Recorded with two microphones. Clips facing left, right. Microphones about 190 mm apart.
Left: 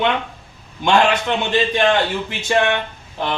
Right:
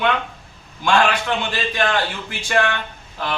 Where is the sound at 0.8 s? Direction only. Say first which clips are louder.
Left 2 dB; 20° left (ahead or behind).